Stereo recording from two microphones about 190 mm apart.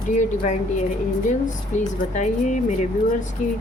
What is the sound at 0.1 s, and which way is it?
A woman's voice, 40° left (ahead or behind).